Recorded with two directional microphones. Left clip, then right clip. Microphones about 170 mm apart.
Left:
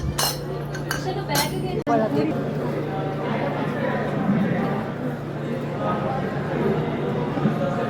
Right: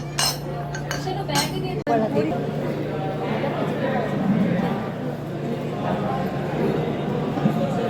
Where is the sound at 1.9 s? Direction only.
Centre (ahead or behind).